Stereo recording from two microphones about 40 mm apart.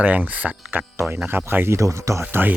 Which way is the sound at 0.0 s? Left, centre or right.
Right.